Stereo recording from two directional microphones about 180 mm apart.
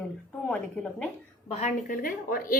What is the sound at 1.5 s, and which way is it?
A woman's voice, 40° left (ahead or behind).